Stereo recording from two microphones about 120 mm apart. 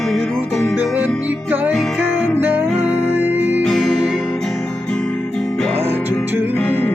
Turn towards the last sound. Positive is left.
turn(degrees=-15)  # may be behind; listen again after turning